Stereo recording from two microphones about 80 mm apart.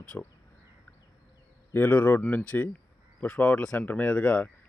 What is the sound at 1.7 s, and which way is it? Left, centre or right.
Speech, left.